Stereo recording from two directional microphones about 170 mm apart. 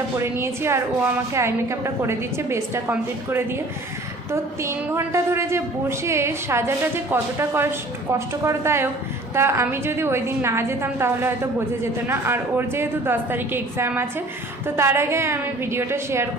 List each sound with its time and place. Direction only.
0.2 s a woman's voice: 15° right (ahead or behind)